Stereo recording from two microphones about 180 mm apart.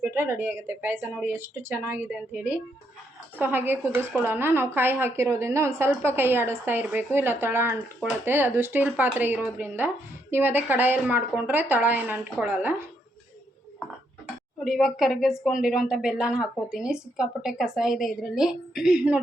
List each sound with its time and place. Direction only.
0.0 s a woman's voice: 10° right (ahead or behind)
14.6 s speech: centre (ahead or behind)